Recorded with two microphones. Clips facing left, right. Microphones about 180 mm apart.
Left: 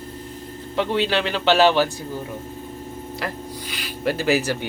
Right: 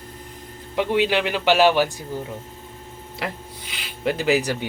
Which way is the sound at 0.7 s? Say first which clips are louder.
Right 1 dB; 15° right (ahead or behind).